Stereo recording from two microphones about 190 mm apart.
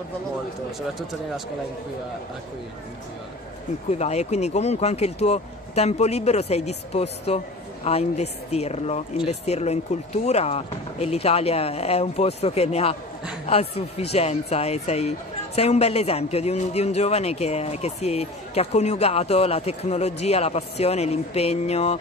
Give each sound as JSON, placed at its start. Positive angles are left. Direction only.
{"t": 0.7, "sound": "speech", "side_deg": 0}
{"t": 4.0, "sound": "speech", "side_deg": 35}